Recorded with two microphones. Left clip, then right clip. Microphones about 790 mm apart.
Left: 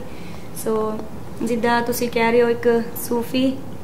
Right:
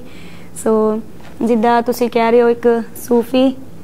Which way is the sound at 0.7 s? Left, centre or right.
Right.